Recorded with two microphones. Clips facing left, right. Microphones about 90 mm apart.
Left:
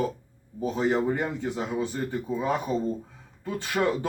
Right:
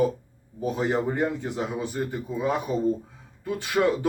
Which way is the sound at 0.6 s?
15° right (ahead or behind).